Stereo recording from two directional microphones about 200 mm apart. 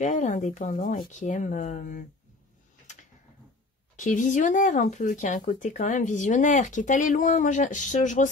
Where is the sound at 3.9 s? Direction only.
40° left (ahead or behind).